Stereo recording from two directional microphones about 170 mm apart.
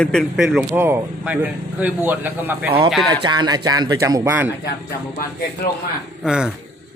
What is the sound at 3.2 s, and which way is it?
Speech, 25° right (ahead or behind).